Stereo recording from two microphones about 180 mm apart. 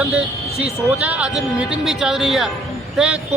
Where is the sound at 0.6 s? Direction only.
5° right (ahead or behind).